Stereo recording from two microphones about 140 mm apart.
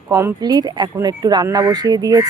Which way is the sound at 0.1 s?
20° right (ahead or behind).